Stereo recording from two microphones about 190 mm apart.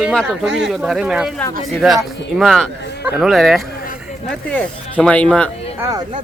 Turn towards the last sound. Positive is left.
turn(degrees=-20)  # may be behind; listen again after turning